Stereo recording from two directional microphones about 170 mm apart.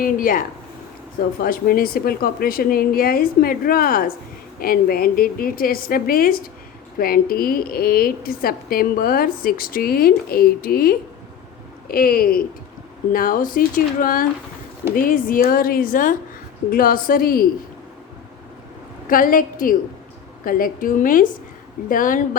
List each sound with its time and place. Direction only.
0.0 s a woman's voice: 55° left (ahead or behind)
19.0 s a woman's voice: 55° left (ahead or behind)